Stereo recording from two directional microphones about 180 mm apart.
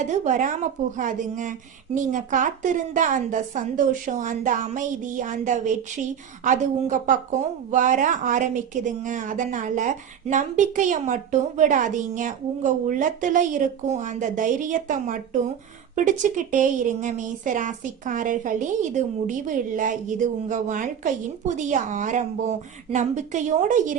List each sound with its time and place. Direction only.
0.0 s a woman's voice: 45° right (ahead or behind)